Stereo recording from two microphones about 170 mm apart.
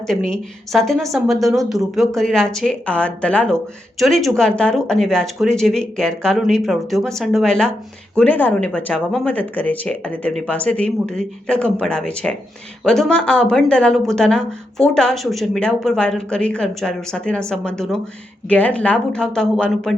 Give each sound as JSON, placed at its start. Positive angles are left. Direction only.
{"t": 0.1, "sound": "a woman's voice", "side_deg": 0}